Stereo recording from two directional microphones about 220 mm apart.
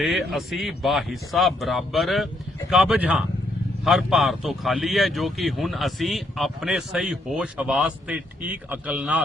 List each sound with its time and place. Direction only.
0.0 s a man's voice: centre (ahead or behind)